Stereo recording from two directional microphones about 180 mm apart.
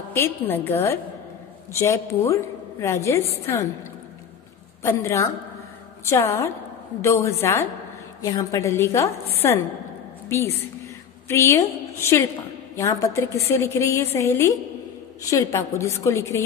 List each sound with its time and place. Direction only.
0.1 s a woman's voice: 10° left (ahead or behind)
4.8 s a woman's voice: 15° left (ahead or behind)
10.2 s a woman's voice: 15° left (ahead or behind)